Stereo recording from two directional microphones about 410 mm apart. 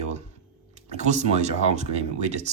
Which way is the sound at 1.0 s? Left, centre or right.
Centre.